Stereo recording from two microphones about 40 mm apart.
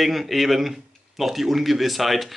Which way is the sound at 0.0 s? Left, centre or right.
Centre.